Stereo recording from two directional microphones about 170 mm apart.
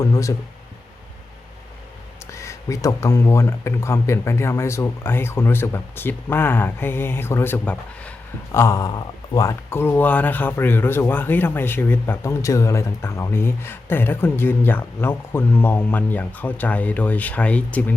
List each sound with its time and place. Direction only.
0.0 s speech: 20° left (ahead or behind)
2.3 s speech: 15° left (ahead or behind)